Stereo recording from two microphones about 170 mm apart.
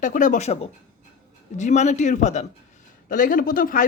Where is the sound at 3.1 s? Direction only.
55° left (ahead or behind).